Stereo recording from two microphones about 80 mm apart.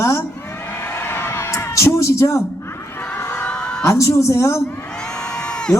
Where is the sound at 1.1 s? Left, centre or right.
Left.